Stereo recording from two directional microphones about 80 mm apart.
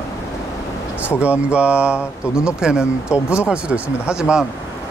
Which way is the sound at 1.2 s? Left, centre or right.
Centre.